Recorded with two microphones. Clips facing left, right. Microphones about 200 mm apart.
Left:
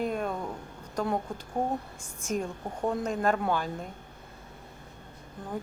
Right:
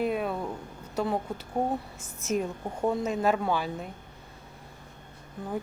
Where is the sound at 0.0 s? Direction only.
5° right (ahead or behind).